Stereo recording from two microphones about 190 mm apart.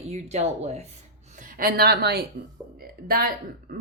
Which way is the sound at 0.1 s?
35° right (ahead or behind).